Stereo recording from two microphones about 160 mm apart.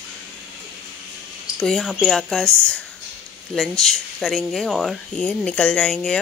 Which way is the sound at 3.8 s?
Centre (ahead or behind).